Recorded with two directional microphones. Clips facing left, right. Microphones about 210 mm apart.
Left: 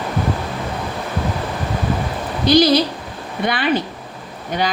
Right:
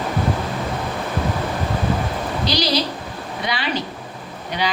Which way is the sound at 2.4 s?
50° left (ahead or behind).